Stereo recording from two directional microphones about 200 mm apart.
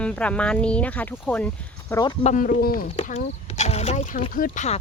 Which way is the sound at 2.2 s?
40° left (ahead or behind).